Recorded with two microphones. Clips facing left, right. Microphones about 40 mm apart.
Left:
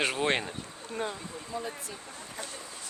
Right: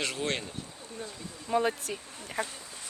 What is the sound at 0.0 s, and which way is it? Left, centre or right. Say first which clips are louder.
Speech: left 4 dB; left.